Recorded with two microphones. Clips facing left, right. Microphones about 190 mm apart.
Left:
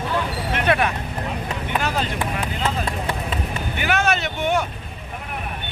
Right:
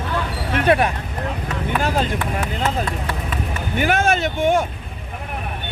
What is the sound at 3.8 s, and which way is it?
Vehicle, 45° right (ahead or behind).